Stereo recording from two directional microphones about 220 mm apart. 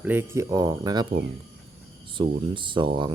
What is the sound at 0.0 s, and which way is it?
Speech, 10° right (ahead or behind).